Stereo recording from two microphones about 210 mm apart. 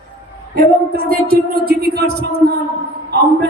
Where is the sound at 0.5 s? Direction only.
45° right (ahead or behind).